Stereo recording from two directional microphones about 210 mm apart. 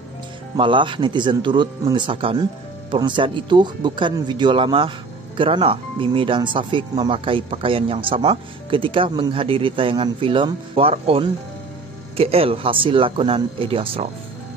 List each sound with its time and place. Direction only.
0.6 s speech: 25° right (ahead or behind)